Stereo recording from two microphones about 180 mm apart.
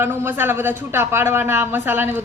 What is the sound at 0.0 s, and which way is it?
Speech, 10° right (ahead or behind).